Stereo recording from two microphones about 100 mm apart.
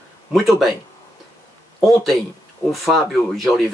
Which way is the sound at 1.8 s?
Centre (ahead or behind).